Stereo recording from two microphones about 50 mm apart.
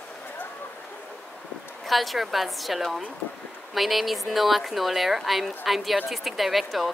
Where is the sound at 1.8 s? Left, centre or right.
Centre.